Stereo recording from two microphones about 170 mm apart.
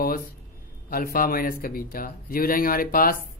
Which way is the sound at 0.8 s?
60° left (ahead or behind).